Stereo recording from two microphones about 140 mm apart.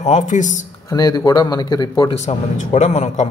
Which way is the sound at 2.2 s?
55° left (ahead or behind).